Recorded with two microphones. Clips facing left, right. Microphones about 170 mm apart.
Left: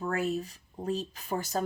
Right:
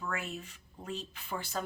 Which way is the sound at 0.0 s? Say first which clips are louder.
Left 9 dB; 40° left (ahead or behind).